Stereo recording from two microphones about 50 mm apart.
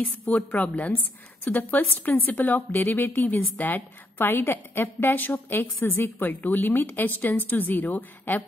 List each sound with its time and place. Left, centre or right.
0.0 s a woman's voice: left